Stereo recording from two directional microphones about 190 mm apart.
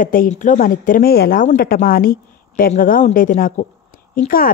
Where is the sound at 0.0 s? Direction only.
45° left (ahead or behind).